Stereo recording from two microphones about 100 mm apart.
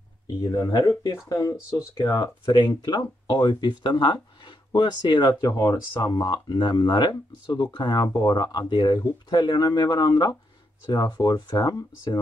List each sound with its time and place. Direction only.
0.4 s speech: 40° left (ahead or behind)
2.1 s speech: 45° left (ahead or behind)
6.2 s speech: 50° left (ahead or behind)